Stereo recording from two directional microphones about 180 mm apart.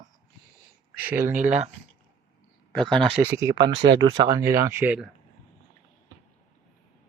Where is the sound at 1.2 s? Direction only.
45° right (ahead or behind).